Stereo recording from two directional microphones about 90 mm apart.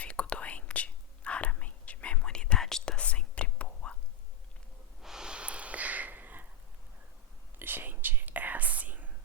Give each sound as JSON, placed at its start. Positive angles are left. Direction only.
{"t": 0.0, "sound": "whispering", "side_deg": 10}
{"t": 5.0, "sound": "snort", "side_deg": -5}
{"t": 7.6, "sound": "whispering", "side_deg": -20}